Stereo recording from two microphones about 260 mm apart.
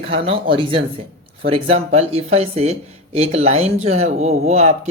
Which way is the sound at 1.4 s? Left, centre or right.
Right.